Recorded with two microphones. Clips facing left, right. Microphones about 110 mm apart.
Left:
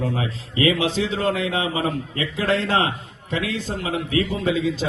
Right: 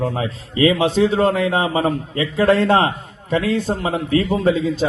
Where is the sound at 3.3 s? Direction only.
45° right (ahead or behind).